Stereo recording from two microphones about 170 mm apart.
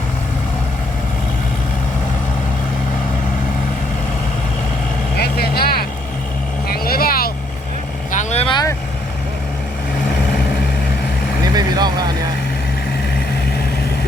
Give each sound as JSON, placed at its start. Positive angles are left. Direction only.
{"t": 5.1, "sound": "vehicle", "side_deg": 70}
{"t": 8.1, "sound": "vehicle", "side_deg": 45}
{"t": 11.4, "sound": "vehicle", "side_deg": -25}